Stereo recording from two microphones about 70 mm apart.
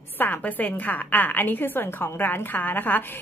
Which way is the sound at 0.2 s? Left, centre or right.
Left.